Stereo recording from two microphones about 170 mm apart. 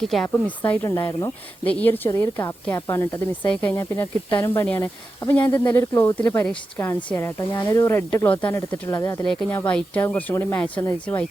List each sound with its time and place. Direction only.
0.0 s speech: centre (ahead or behind)
0.9 s speech: 20° left (ahead or behind)
1.6 s speech: 10° left (ahead or behind)
9.2 s speech: 5° left (ahead or behind)